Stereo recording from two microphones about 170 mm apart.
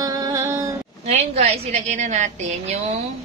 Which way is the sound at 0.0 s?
20° right (ahead or behind).